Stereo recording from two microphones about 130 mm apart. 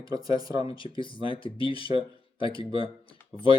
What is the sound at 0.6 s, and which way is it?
Speech, 40° left (ahead or behind).